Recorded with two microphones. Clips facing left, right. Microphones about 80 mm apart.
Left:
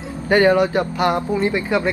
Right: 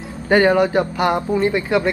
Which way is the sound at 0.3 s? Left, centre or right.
Right.